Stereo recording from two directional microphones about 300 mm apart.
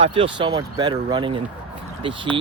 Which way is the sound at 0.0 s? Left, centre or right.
Centre.